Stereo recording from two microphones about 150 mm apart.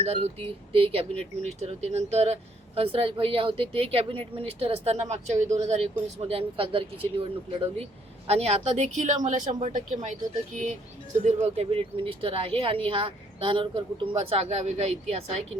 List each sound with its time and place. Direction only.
0.0 s a woman's voice: 45° right (ahead or behind)
11.4 s speech: 40° right (ahead or behind)